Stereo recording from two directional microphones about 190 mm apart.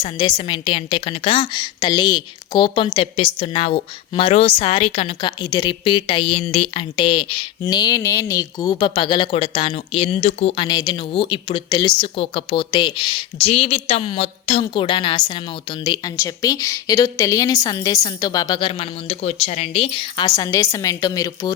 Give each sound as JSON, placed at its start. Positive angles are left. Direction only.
{"t": 0.0, "sound": "speech", "side_deg": 25}